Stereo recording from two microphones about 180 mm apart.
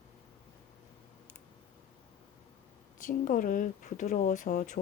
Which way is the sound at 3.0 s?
50° left (ahead or behind).